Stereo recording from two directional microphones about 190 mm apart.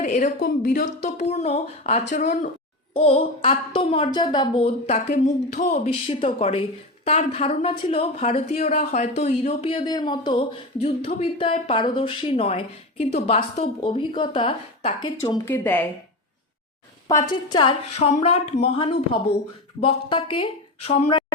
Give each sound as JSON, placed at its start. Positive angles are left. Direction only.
{"t": 0.0, "sound": "a woman's voice", "side_deg": 40}
{"t": 2.9, "sound": "a woman's voice", "side_deg": 30}
{"t": 15.2, "sound": "speech", "side_deg": 15}
{"t": 17.1, "sound": "a woman's voice", "side_deg": 20}